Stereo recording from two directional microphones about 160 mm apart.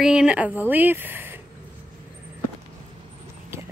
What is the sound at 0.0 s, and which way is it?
Speech, 5° right (ahead or behind).